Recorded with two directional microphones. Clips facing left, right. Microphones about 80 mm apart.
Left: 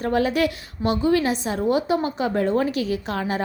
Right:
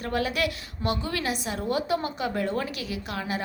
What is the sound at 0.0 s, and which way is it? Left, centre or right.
A woman's voice, left.